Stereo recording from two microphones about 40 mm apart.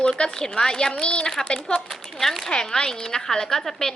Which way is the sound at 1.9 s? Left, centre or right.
Centre.